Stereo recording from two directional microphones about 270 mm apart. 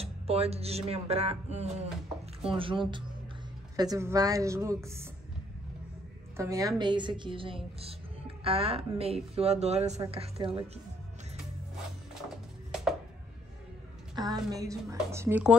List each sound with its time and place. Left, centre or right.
0.0 s a woman's voice: right
6.3 s a woman's voice: centre
14.1 s a woman's voice: centre